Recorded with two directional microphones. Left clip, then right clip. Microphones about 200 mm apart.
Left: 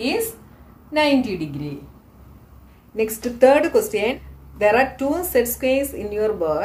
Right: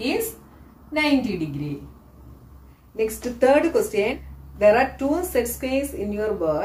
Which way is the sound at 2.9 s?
45° left (ahead or behind).